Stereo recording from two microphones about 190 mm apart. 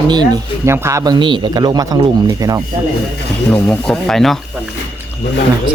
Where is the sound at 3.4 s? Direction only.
10° left (ahead or behind).